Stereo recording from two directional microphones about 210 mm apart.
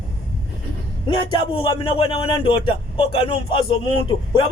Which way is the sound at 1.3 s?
25° left (ahead or behind).